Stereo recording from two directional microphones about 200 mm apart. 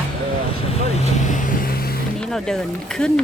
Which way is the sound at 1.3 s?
40° left (ahead or behind).